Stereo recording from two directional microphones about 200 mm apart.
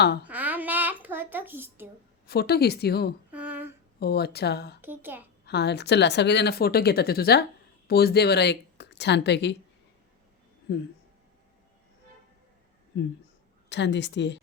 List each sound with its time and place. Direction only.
0.3 s a sound: 10° right (ahead or behind)
2.2 s a woman's voice: 50° left (ahead or behind)
3.3 s a sound: 10° right (ahead or behind)
4.0 s a woman's voice: 55° left (ahead or behind)
4.8 s a child's voice: 10° right (ahead or behind)
5.5 s a woman's voice: 55° left (ahead or behind)
13.7 s a woman's voice: 60° left (ahead or behind)